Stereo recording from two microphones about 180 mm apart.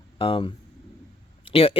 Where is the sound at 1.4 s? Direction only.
30° left (ahead or behind).